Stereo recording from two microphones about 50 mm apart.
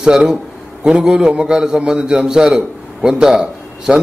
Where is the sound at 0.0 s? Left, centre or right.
Centre.